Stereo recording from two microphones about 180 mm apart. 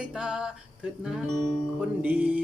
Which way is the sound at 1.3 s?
20° left (ahead or behind).